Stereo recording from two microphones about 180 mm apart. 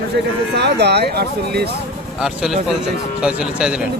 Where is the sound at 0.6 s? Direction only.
65° right (ahead or behind).